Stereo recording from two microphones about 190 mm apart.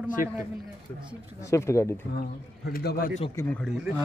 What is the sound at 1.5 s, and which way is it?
Speech, 15° left (ahead or behind).